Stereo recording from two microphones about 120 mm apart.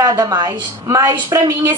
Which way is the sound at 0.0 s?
30° right (ahead or behind).